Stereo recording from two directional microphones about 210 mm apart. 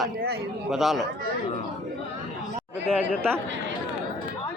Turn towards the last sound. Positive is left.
turn(degrees=-10)  # may be behind; listen again after turning